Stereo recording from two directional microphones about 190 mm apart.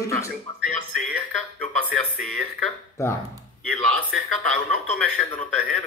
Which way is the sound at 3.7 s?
90° right.